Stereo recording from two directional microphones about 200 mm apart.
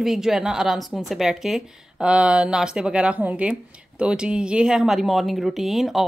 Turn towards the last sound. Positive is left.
turn(degrees=0)  # may be behind; listen again after turning